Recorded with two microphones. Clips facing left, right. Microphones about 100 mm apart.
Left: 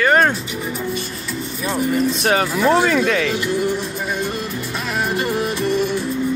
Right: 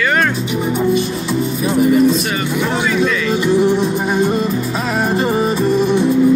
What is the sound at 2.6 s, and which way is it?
Speech, 50° left (ahead or behind).